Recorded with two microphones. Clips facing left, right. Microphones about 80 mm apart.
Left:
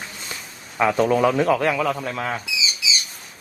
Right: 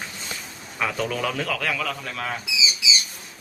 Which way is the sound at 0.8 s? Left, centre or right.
Left.